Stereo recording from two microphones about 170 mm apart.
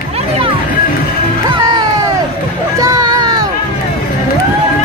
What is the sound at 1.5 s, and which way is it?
Music, 25° right (ahead or behind).